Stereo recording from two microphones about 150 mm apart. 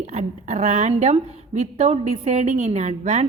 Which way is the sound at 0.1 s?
50° right (ahead or behind).